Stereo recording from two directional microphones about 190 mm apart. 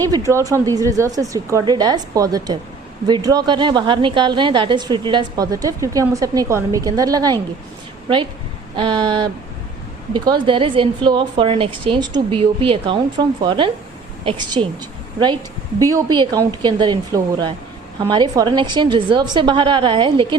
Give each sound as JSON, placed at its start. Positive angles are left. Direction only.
{"t": 0.0, "sound": "a woman's voice", "side_deg": -20}
{"t": 8.7, "sound": "a woman's voice", "side_deg": -25}
{"t": 15.8, "sound": "a woman's voice", "side_deg": -20}